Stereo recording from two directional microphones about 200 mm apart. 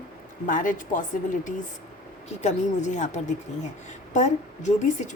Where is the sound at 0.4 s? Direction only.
40° left (ahead or behind).